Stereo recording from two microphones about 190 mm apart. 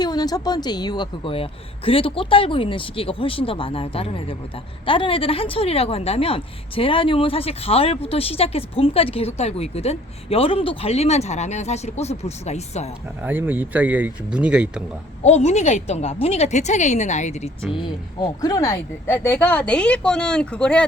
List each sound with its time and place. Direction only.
0.0 s a woman's voice: 20° left (ahead or behind)
13.2 s speech: 10° right (ahead or behind)
15.2 s speech: 35° left (ahead or behind)
17.8 s speech: 20° left (ahead or behind); by 20.8 s 5° left (ahead or behind)